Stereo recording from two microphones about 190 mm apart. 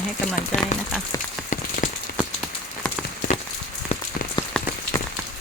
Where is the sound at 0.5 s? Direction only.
35° left (ahead or behind).